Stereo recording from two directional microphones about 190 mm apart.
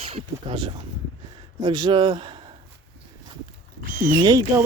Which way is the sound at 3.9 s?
45° right (ahead or behind).